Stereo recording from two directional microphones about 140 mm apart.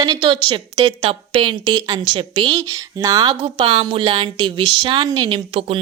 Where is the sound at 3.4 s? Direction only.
45° right (ahead or behind).